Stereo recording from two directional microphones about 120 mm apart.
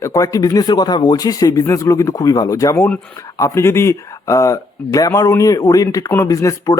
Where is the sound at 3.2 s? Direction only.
25° left (ahead or behind).